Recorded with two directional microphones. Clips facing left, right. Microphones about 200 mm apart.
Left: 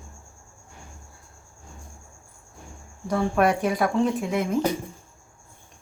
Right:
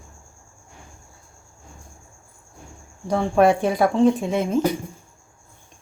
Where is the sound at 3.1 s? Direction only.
25° right (ahead or behind).